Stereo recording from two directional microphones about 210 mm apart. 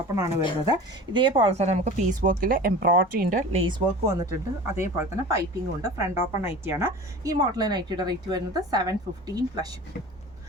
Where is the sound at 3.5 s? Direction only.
25° right (ahead or behind).